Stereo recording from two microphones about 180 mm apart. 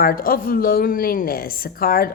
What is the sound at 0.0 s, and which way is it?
A woman's voice, 55° left (ahead or behind).